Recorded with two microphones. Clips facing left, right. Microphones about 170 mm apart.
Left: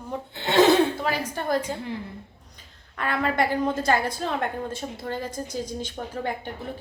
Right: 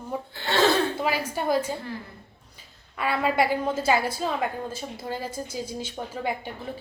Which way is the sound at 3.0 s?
10° right (ahead or behind).